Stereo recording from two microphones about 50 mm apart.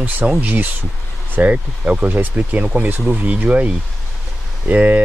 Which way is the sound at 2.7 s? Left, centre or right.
Right.